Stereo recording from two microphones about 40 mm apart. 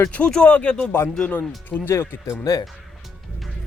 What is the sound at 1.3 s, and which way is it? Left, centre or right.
Speech, left.